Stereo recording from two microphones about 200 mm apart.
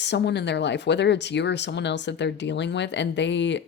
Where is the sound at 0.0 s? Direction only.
60° left (ahead or behind).